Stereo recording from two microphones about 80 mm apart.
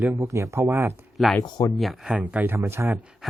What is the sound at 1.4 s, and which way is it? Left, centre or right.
Speech, left.